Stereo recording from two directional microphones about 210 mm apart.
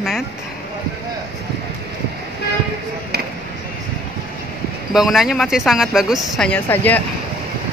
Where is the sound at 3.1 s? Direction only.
50° right (ahead or behind).